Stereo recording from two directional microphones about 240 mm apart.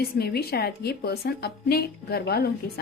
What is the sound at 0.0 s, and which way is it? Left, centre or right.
A woman's voice, left.